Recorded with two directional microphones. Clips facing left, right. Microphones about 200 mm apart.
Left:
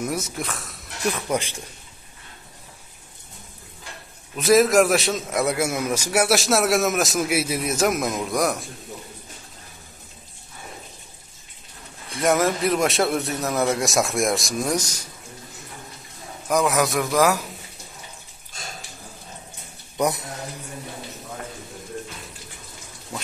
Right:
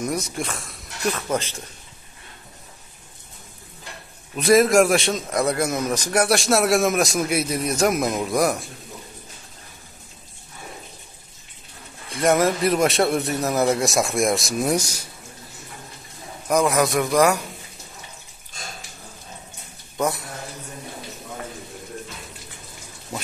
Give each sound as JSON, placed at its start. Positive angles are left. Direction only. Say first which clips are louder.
{"t": 0.0, "sound": "a man's voice", "louder": "right 1 dB", "side_deg": 5}
{"t": 1.0, "sound": "speech", "louder": "even", "side_deg": 15}
{"t": 4.4, "sound": "a man's voice", "louder": "right 1 dB", "side_deg": 0}
{"t": 12.2, "sound": "a man's voice", "louder": "right 2 dB", "side_deg": 0}
{"t": 16.4, "sound": "a man's voice", "louder": "right 1 dB", "side_deg": 0}
{"t": 20.0, "sound": "a man's voice", "louder": "left 1 dB", "side_deg": 20}